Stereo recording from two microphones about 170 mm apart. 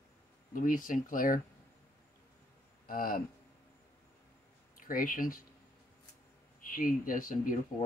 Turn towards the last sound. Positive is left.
turn(degrees=55)  # may be behind; listen again after turning